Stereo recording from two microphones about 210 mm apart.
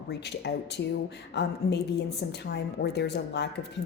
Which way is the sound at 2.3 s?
55° left (ahead or behind).